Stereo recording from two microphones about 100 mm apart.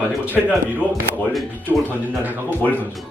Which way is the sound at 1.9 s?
20° right (ahead or behind).